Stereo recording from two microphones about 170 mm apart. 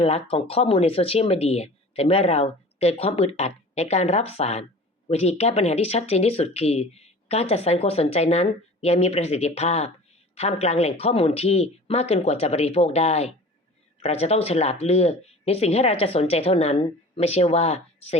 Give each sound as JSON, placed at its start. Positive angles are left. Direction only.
{"t": 0.0, "sound": "speech", "side_deg": 35}